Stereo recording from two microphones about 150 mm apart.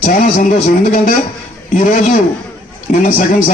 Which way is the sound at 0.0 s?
65° left (ahead or behind).